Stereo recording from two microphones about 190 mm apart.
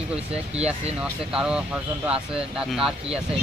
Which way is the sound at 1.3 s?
5° right (ahead or behind).